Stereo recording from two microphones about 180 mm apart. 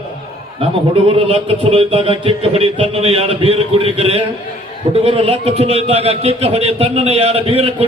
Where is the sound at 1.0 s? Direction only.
30° right (ahead or behind).